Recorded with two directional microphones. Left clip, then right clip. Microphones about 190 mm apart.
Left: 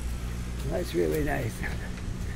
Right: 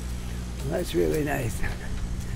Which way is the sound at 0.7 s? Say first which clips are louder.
Right 2 dB; 15° right (ahead or behind).